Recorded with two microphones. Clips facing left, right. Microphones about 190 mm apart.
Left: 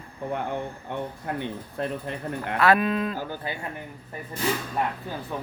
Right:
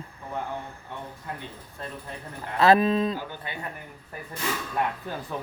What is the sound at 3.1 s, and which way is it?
Speech, 40° left (ahead or behind).